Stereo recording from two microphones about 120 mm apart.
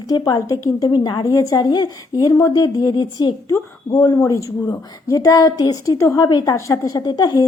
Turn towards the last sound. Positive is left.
turn(degrees=35)  # may be behind; listen again after turning